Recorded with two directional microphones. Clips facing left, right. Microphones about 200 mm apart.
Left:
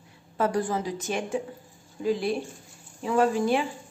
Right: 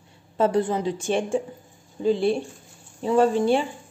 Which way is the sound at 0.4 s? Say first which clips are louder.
Right 4 dB; 25° right (ahead or behind).